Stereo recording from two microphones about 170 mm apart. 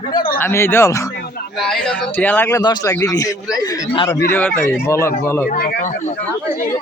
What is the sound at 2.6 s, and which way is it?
A man's voice, 20° left (ahead or behind).